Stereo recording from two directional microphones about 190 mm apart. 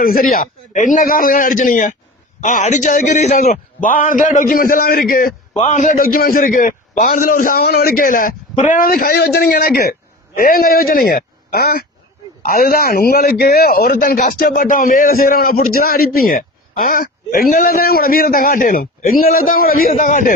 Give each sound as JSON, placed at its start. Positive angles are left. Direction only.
{"t": 0.0, "sound": "speech", "side_deg": 50}